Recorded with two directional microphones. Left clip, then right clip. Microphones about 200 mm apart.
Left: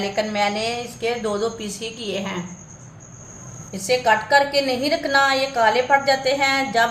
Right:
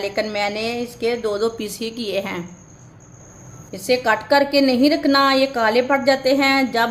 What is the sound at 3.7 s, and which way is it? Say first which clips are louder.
A woman's voice: even; 50° right (ahead or behind).